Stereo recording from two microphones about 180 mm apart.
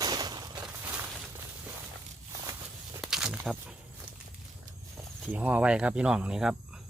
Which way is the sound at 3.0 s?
5° right (ahead or behind).